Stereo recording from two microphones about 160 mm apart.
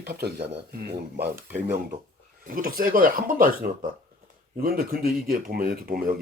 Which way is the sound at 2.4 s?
60° right (ahead or behind).